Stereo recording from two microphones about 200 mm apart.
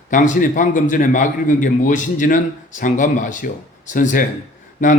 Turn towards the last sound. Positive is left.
turn(degrees=40)  # may be behind; listen again after turning